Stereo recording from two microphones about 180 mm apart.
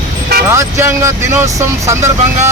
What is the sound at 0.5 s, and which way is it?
Speech, 15° right (ahead or behind).